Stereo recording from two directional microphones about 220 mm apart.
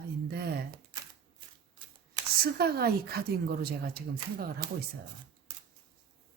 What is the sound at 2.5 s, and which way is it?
Speech, 45° right (ahead or behind).